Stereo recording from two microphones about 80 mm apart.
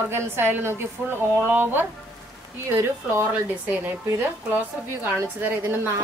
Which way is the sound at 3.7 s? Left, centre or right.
Centre.